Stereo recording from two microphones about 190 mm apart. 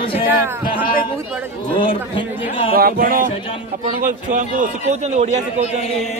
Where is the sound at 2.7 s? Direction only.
50° right (ahead or behind).